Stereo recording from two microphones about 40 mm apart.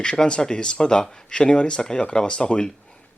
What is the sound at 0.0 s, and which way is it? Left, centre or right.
Speech, left.